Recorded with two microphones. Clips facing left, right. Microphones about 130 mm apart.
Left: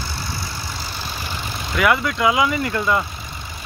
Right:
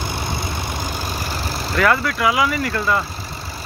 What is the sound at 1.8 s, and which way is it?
Speech, 15° left (ahead or behind).